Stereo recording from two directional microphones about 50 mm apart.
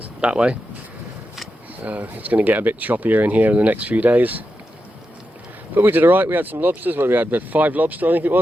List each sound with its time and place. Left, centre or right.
0.2 s speech: right
1.8 s speech: right
5.7 s speech: right